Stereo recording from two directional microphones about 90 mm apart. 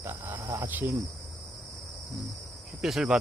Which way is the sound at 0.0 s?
25° right (ahead or behind).